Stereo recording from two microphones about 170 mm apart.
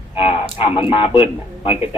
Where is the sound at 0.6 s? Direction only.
30° left (ahead or behind).